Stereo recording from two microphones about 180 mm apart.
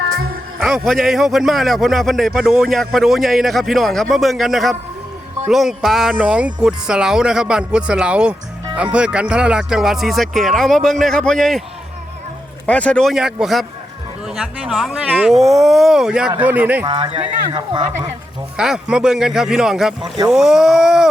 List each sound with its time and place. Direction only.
0.6 s speech: centre (ahead or behind)
12.6 s speech: 5° left (ahead or behind); by 16.8 s 10° right (ahead or behind)
16.8 s speech: 25° right (ahead or behind)
18.5 s speech: 5° right (ahead or behind)